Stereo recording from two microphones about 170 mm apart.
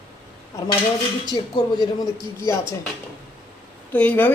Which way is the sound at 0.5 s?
20° left (ahead or behind).